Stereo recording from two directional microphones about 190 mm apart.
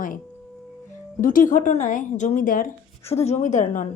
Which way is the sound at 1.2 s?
45° left (ahead or behind).